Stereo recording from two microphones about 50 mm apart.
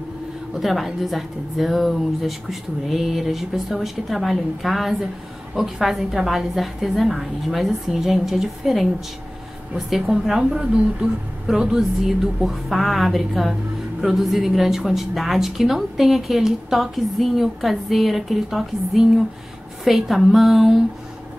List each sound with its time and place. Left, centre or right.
0.6 s a woman's voice: centre